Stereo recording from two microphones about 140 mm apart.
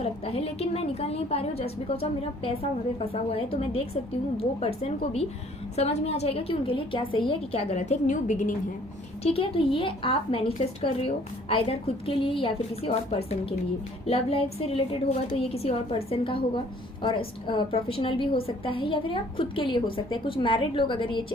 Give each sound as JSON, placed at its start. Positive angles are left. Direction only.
{"t": 0.0, "sound": "a woman's voice", "side_deg": 45}
{"t": 9.2, "sound": "a woman's voice", "side_deg": 45}